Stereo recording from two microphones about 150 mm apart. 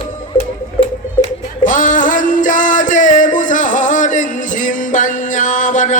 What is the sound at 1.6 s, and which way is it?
Music, 60° left (ahead or behind).